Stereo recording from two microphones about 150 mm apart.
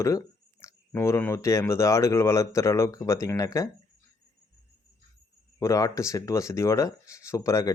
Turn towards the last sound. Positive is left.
turn(degrees=20)  # may be behind; listen again after turning